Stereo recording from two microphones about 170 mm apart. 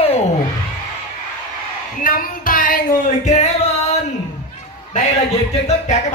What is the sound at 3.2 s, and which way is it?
Singing, 40° left (ahead or behind).